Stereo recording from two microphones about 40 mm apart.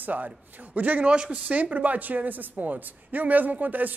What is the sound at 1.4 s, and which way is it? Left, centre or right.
Speech, right.